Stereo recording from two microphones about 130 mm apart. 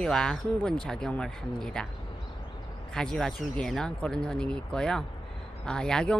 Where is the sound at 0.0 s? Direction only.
5° left (ahead or behind).